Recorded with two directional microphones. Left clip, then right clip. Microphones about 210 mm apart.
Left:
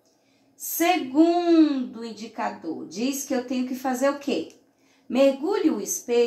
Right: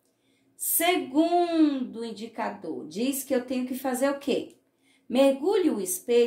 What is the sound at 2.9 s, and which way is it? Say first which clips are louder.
A woman's voice: even; 50° right (ahead or behind).